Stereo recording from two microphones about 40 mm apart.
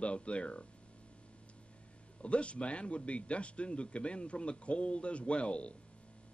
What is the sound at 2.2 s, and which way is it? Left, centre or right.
Speech, left.